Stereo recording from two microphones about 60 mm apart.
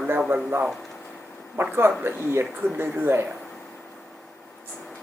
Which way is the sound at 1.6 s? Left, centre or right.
Right.